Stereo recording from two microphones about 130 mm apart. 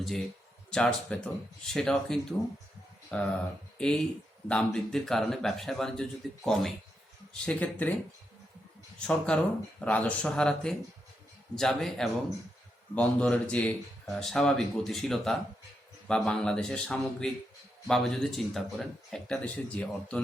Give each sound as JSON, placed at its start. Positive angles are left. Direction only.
{"t": 0.0, "sound": "speech", "side_deg": 0}
{"t": 9.0, "sound": "speech", "side_deg": 5}